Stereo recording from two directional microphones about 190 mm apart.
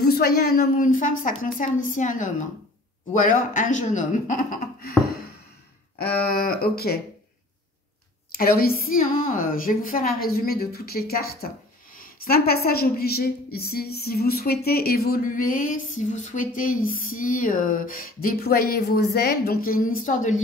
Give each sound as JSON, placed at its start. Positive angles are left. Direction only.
{"t": 0.0, "sound": "a woman's voice", "side_deg": 55}
{"t": 8.3, "sound": "a woman's voice", "side_deg": 50}